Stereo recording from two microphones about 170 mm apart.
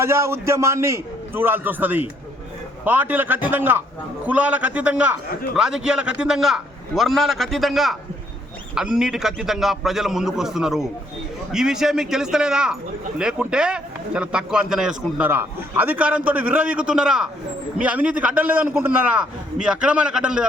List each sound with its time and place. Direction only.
0.0 s a man's voice: 15° right (ahead or behind)